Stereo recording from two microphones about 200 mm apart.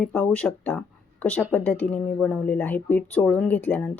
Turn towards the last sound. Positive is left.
turn(degrees=10)  # may be behind; listen again after turning